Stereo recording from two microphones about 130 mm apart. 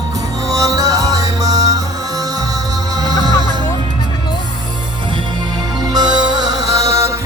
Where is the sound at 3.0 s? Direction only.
30° right (ahead or behind).